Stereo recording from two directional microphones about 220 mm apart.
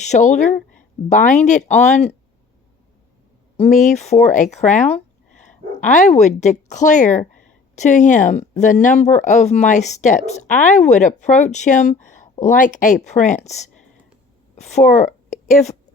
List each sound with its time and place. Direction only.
0.0 s speech: 35° left (ahead or behind)
3.6 s a woman's voice: 30° left (ahead or behind)